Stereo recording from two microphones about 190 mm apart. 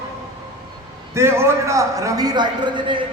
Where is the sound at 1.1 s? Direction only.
15° right (ahead or behind).